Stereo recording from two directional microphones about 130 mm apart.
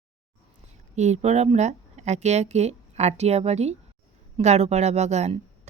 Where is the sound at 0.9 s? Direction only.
60° right (ahead or behind).